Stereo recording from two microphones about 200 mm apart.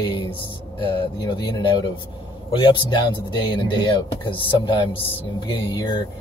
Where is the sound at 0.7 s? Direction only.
25° left (ahead or behind).